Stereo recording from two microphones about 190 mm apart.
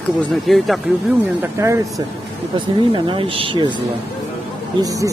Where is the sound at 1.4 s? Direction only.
15° right (ahead or behind).